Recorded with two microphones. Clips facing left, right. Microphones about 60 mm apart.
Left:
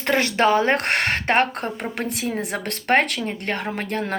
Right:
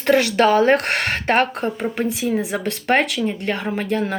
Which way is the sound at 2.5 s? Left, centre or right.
Left.